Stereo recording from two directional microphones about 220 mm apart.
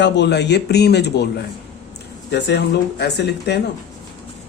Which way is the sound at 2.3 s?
50° left (ahead or behind).